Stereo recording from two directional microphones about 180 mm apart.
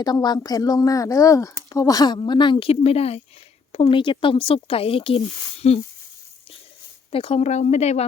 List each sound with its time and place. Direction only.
0.0 s speech: 20° left (ahead or behind)
7.1 s speech: 30° left (ahead or behind)